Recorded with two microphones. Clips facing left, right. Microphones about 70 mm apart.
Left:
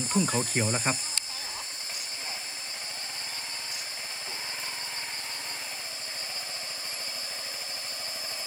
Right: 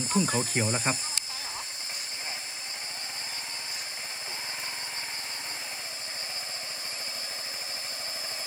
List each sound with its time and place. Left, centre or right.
0.1 s speech: centre